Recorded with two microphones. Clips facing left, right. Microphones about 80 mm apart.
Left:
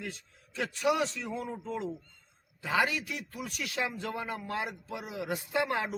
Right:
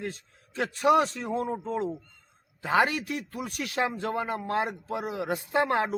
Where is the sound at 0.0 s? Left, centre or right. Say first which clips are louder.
Right 5 dB; right.